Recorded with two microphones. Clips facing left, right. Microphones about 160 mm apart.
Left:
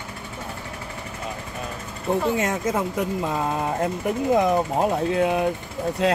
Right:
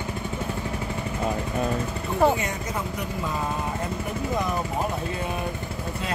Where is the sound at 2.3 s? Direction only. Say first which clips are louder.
Left 6 dB; 90° left.